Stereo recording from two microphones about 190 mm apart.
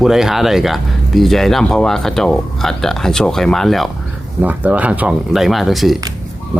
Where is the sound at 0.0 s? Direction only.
Centre (ahead or behind).